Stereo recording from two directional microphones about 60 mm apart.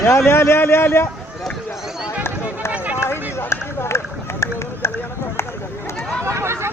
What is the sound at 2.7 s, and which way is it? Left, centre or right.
Run, right.